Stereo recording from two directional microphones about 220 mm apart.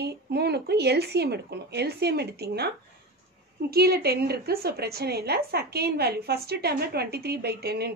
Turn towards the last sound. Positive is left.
turn(degrees=-45)  # may be behind; listen again after turning